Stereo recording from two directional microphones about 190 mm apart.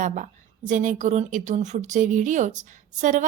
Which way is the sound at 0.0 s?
40° right (ahead or behind).